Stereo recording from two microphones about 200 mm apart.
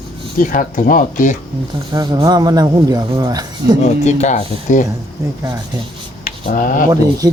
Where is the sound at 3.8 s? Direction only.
35° left (ahead or behind).